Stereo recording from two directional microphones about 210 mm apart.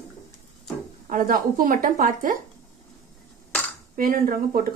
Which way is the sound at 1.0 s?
40° right (ahead or behind).